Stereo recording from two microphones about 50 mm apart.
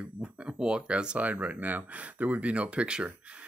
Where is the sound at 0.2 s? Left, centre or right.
Right.